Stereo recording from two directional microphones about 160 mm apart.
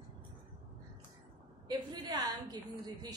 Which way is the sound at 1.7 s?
25° right (ahead or behind).